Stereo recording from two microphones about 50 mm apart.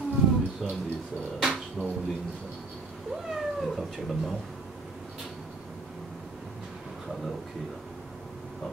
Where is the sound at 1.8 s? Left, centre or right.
Centre.